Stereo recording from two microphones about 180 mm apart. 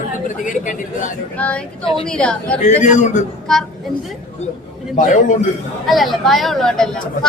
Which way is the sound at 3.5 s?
5° left (ahead or behind).